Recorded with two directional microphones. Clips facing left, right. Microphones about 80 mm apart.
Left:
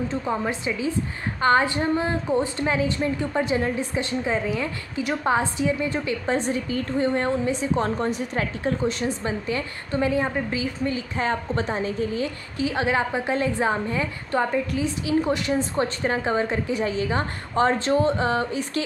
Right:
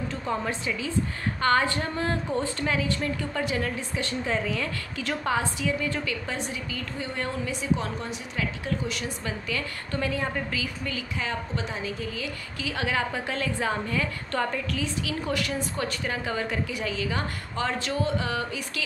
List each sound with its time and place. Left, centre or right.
0.1 s a woman's voice: centre